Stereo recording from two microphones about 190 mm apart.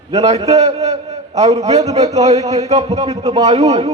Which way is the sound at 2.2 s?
35° right (ahead or behind).